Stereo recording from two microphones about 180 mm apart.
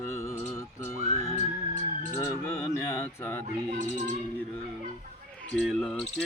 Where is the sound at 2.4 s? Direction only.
10° left (ahead or behind).